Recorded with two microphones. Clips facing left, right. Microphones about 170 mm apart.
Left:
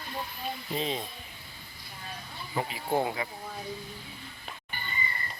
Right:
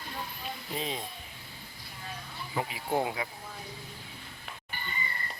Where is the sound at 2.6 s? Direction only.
15° right (ahead or behind).